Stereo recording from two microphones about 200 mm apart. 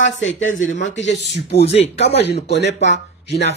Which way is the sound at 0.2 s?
70° left (ahead or behind).